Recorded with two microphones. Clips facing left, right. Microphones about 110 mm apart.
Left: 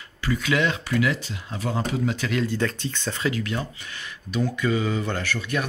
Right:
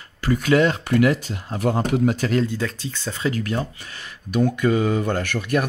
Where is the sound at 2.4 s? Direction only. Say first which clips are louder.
Left 1 dB; 10° right (ahead or behind).